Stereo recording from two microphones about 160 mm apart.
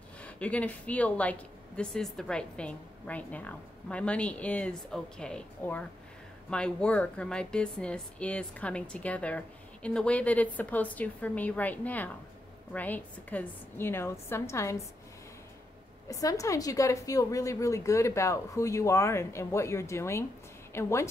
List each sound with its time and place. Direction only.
0.2 s speech: 10° left (ahead or behind)
16.1 s a woman's voice: 20° left (ahead or behind)